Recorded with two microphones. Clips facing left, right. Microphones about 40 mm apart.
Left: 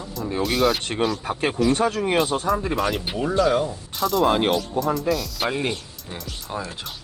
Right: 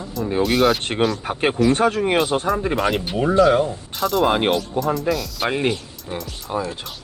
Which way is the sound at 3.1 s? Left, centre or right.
Right.